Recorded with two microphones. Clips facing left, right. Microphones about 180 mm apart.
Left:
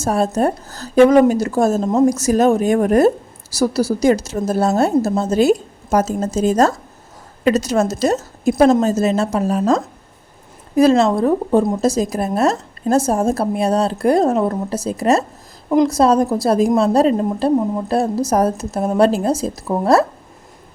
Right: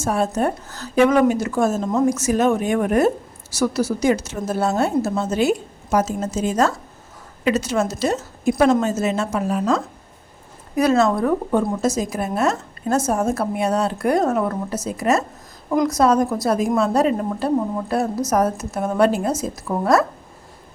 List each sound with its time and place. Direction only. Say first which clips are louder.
0.0 s a woman's voice: left 3 dB; 35° left (ahead or behind)
2.0 s a woman's voice: left 3 dB; 40° left (ahead or behind)
10.8 s a woman's voice: left 4 dB; 30° left (ahead or behind)